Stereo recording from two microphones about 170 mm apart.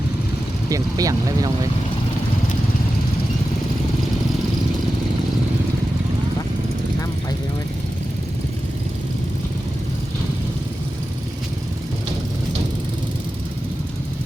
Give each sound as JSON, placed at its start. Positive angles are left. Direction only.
{"t": 0.7, "sound": "speech", "side_deg": -20}